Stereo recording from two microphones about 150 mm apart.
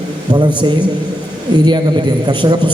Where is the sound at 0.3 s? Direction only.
30° right (ahead or behind).